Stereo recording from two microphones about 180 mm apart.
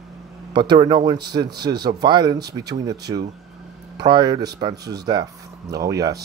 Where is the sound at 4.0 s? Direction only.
25° right (ahead or behind).